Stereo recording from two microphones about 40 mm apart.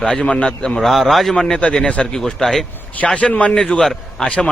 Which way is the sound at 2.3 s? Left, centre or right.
Centre.